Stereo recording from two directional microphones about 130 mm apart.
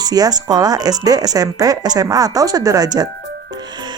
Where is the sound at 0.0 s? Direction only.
30° right (ahead or behind).